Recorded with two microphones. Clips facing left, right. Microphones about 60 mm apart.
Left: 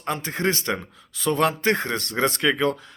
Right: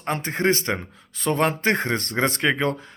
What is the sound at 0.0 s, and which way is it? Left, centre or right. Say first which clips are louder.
Speech: right 2 dB; right.